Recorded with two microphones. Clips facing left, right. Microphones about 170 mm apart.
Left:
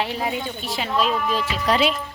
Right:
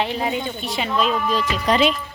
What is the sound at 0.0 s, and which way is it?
Speech, 5° left (ahead or behind).